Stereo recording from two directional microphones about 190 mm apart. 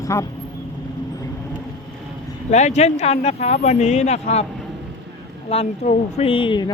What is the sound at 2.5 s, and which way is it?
Speech, 35° left (ahead or behind).